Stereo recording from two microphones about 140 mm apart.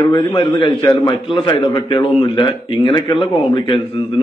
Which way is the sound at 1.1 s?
35° left (ahead or behind).